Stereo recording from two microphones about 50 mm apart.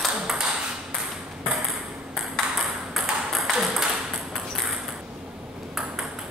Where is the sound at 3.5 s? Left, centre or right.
Centre.